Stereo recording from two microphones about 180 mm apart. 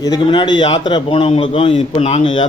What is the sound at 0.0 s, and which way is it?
A man's voice, 25° left (ahead or behind).